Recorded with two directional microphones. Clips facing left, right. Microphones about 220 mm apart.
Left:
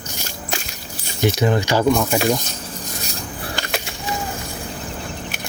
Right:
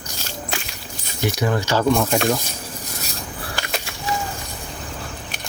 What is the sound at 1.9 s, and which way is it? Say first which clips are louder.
Speech: even; centre (ahead or behind).